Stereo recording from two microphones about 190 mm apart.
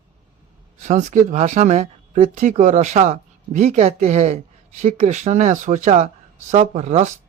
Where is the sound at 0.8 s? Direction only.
40° right (ahead or behind).